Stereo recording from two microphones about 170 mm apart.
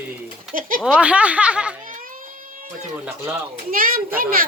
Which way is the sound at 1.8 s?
55° right (ahead or behind).